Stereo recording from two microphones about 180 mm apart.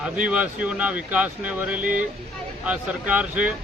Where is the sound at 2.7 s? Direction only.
5° right (ahead or behind).